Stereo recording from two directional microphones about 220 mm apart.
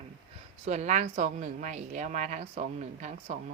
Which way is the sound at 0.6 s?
30° right (ahead or behind).